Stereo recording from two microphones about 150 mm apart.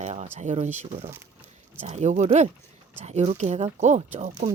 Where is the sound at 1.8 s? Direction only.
50° right (ahead or behind).